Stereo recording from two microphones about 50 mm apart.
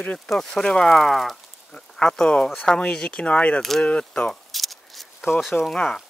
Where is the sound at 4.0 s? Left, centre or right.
Centre.